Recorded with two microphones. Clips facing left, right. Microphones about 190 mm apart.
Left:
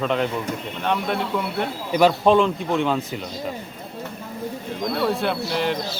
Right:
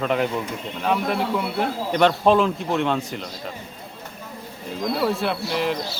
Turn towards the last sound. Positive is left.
turn(degrees=0)  # may be behind; listen again after turning